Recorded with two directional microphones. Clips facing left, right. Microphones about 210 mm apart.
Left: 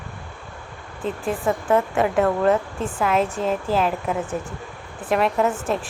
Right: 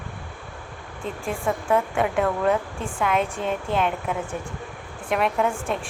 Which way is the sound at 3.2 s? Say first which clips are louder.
Left 3 dB; 30° left (ahead or behind).